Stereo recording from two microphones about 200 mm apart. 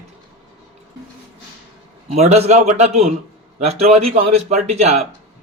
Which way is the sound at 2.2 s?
30° right (ahead or behind).